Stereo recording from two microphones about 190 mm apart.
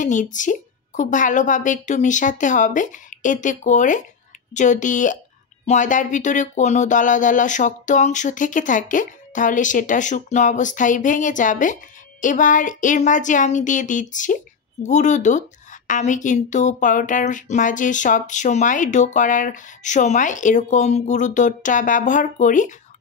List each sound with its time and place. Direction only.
0.0 s speech: 40° left (ahead or behind)